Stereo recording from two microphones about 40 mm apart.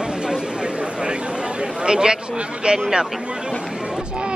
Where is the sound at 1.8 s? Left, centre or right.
Right.